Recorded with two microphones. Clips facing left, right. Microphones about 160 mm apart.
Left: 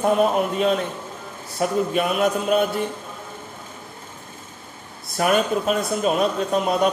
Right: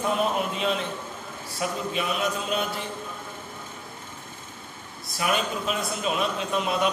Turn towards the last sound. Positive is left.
turn(degrees=45)  # may be behind; listen again after turning